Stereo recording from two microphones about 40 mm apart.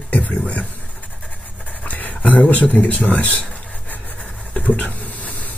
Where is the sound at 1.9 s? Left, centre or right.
Left.